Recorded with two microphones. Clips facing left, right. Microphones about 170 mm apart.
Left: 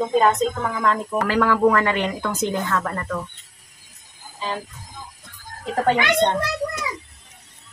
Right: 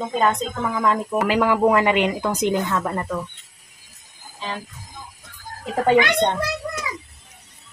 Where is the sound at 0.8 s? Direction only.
15° right (ahead or behind).